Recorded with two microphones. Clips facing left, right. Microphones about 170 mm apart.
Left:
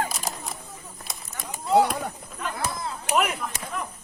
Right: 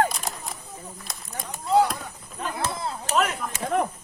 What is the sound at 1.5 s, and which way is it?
Run, 5° left (ahead or behind).